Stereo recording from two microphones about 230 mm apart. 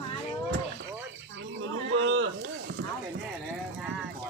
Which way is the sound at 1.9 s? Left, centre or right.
Right.